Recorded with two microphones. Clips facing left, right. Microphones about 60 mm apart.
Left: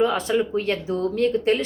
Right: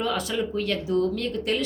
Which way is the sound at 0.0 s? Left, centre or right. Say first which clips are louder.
Left 6 dB; left.